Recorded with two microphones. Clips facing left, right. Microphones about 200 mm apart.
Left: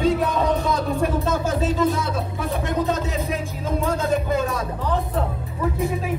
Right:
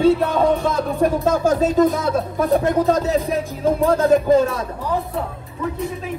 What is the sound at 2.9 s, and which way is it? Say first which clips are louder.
Speech: right 6 dB; 35° right (ahead or behind).